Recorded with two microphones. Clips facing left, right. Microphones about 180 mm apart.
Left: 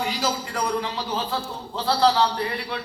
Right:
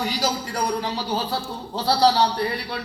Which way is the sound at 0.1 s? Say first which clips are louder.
Right 1 dB; 40° right (ahead or behind).